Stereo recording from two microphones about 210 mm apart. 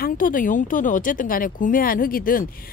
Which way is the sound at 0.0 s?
40° left (ahead or behind).